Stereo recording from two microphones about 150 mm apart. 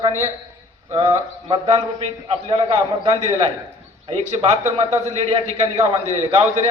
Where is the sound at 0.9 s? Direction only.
25° right (ahead or behind).